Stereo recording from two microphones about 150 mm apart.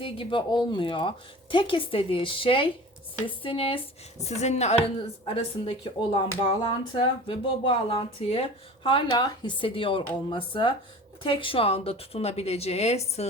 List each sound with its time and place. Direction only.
0.0 s a woman's voice: 35° left (ahead or behind)
4.2 s a woman's voice: 50° left (ahead or behind)